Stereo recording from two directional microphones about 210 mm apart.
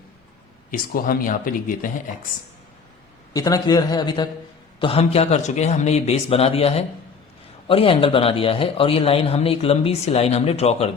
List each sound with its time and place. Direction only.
0.7 s speech: 40° left (ahead or behind)
3.3 s speech: 15° left (ahead or behind)